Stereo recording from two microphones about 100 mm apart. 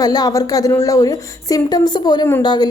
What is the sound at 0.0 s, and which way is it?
A woman's voice, 40° left (ahead or behind).